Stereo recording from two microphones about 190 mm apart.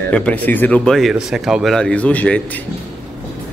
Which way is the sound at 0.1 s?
5° left (ahead or behind).